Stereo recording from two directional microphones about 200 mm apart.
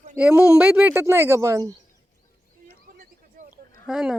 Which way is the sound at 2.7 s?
45° right (ahead or behind).